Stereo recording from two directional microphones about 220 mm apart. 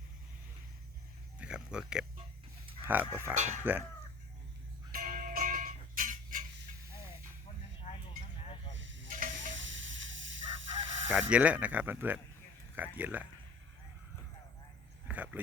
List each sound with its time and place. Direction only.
1.4 s speech: 5° right (ahead or behind)
3.3 s speech: 30° right (ahead or behind)
3.6 s speech: 10° right (ahead or behind)
4.9 s music: 40° right (ahead or behind)
8.7 s snake: 55° right (ahead or behind)
9.5 s chicken: 60° right (ahead or behind)
11.1 s speech: 5° right (ahead or behind)
15.0 s a sound: 5° right (ahead or behind)